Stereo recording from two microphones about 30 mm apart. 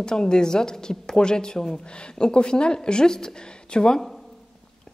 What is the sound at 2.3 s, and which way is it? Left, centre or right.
A woman's voice, left.